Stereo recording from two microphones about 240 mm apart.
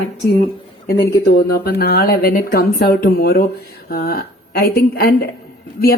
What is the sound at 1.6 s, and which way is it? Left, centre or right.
A woman's voice, left.